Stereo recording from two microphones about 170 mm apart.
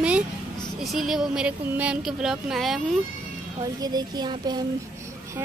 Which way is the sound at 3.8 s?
25° right (ahead or behind).